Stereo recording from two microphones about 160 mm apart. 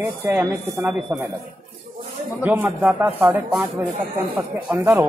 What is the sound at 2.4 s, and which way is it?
Speech, 10° right (ahead or behind).